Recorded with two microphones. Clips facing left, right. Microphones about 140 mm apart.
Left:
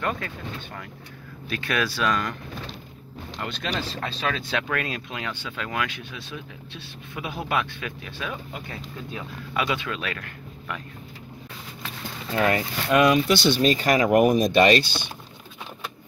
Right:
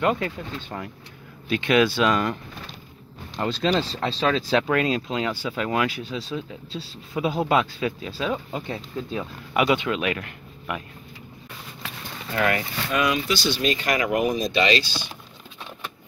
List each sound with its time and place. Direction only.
0.0 s speech: 20° right (ahead or behind)
3.3 s speech: 30° right (ahead or behind)
12.4 s speech: 25° left (ahead or behind)
12.9 s speech: 50° left (ahead or behind)
13.6 s speech: 40° left (ahead or behind)
14.1 s speech: 50° left (ahead or behind)